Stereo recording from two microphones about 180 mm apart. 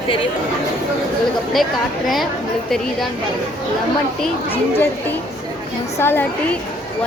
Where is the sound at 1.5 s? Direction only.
Centre (ahead or behind).